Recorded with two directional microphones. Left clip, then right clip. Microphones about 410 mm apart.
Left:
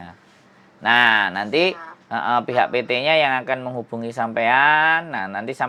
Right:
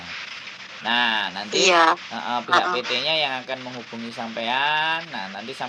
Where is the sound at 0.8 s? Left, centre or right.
Left.